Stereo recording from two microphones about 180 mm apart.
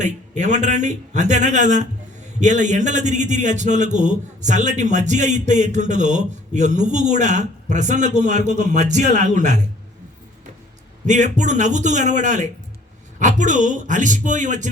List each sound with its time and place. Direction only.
0.0 s a man's voice: 40° right (ahead or behind)
11.0 s a man's voice: 40° right (ahead or behind)